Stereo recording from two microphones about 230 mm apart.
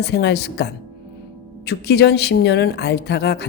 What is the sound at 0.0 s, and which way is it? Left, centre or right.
Speech, left.